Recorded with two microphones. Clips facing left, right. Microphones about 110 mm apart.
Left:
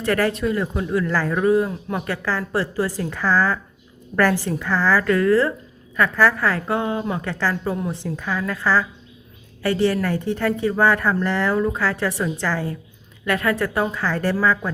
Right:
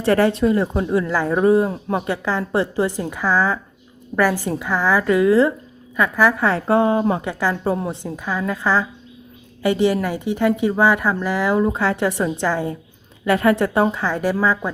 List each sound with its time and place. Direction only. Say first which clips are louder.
0.0 s a woman's voice: right 4 dB; 25° right (ahead or behind)
1.3 s a woman's voice: right 4 dB; 30° right (ahead or behind)
7.2 s a woman's voice: right 2 dB; 15° right (ahead or behind)
7.6 s a woman's voice: right 3 dB; 30° right (ahead or behind)
8.0 s a woman's voice: right 1 dB; 15° right (ahead or behind)
11.5 s a woman's voice: right 3 dB; 20° right (ahead or behind)
13.9 s a woman's voice: right 1 dB; 15° right (ahead or behind)